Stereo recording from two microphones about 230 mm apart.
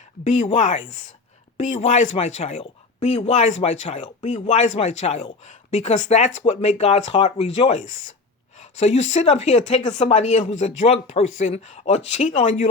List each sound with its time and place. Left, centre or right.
0.3 s speech: left